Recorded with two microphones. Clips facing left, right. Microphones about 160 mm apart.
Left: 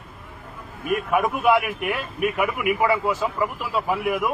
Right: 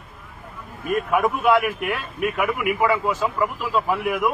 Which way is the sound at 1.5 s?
10° left (ahead or behind).